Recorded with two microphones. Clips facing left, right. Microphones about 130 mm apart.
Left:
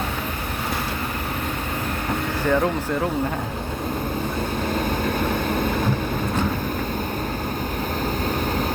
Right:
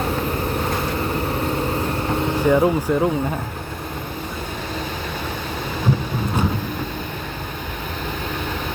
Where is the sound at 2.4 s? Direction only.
15° right (ahead or behind).